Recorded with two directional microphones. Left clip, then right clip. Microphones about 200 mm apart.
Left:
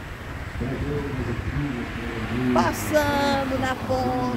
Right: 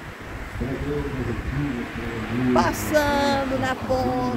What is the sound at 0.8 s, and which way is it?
Speech, 40° left (ahead or behind).